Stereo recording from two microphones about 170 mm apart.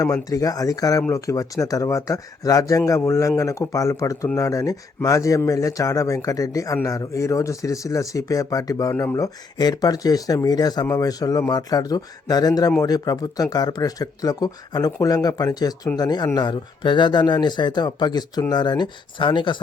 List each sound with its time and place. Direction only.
0.0 s speech: 20° left (ahead or behind)